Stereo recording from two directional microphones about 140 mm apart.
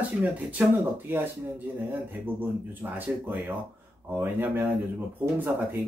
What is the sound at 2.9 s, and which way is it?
Speech, 15° right (ahead or behind).